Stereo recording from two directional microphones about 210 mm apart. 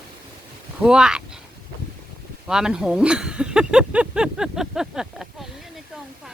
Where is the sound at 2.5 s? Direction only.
5° right (ahead or behind).